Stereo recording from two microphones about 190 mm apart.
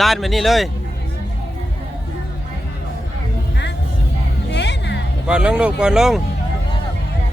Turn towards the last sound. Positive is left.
turn(degrees=-5)  # may be behind; listen again after turning